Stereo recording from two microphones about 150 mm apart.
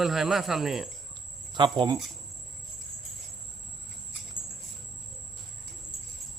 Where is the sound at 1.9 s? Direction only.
Centre (ahead or behind).